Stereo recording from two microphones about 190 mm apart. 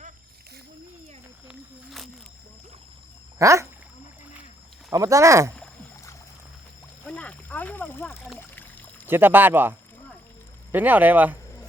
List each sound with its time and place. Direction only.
1.5 s walk: centre (ahead or behind)
3.3 s speech: 15° right (ahead or behind)
4.9 s speech: 15° right (ahead or behind)
7.1 s a sound: 5° left (ahead or behind)
8.4 s pour: 10° left (ahead or behind)
9.0 s speech: 10° right (ahead or behind)